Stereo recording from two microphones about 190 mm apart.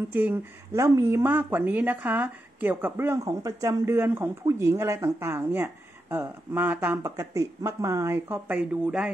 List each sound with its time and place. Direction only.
0.1 s speech: 10° right (ahead or behind)